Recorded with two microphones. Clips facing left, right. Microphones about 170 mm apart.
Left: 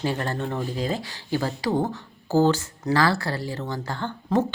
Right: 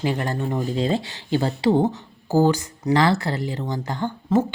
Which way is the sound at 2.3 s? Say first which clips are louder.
Right 1 dB; 15° right (ahead or behind).